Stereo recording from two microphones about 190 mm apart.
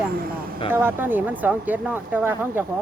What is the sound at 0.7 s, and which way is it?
Speech, 10° right (ahead or behind).